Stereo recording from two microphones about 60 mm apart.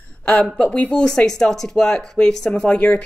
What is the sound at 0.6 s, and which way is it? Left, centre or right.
Speech, left.